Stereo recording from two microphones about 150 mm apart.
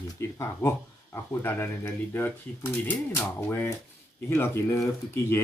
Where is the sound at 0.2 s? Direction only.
20° left (ahead or behind).